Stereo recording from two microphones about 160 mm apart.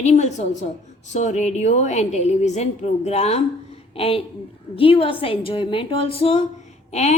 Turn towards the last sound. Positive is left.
turn(degrees=45)  # may be behind; listen again after turning